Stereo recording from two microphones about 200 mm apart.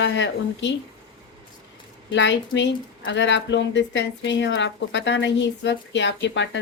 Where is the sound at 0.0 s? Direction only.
65° left (ahead or behind).